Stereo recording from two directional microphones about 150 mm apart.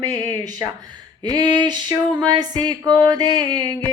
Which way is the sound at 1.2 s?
30° right (ahead or behind).